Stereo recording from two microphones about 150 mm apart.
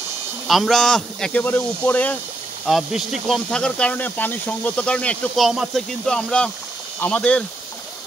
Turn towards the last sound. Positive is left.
turn(degrees=10)  # may be behind; listen again after turning